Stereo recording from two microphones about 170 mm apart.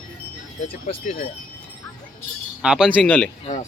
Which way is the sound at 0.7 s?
35° left (ahead or behind).